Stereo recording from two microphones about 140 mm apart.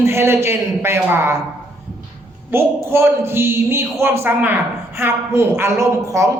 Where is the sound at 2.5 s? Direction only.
20° right (ahead or behind).